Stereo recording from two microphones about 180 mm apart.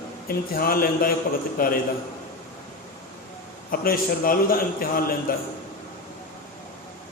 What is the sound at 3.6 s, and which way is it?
A man's voice, 55° left (ahead or behind).